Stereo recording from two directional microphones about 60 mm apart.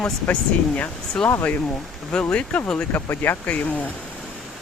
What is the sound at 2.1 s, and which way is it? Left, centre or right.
Speech, centre.